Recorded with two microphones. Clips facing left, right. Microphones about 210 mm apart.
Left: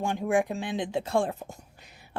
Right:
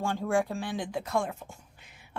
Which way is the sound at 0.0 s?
15° left (ahead or behind).